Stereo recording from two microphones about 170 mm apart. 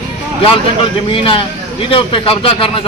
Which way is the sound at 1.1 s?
30° left (ahead or behind).